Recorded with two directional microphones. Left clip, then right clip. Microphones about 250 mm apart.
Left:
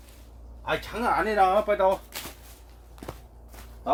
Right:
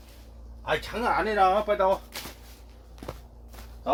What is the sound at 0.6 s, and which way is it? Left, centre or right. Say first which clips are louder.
Speech: even; centre.